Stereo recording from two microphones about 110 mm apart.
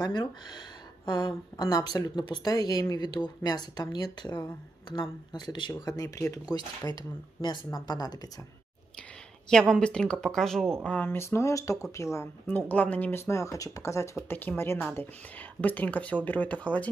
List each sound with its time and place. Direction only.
0.0 s speech: 35° left (ahead or behind)
9.5 s speech: 5° left (ahead or behind); by 12.3 s 25° left (ahead or behind)
12.5 s speech: 15° left (ahead or behind)
14.3 s speech: 15° left (ahead or behind)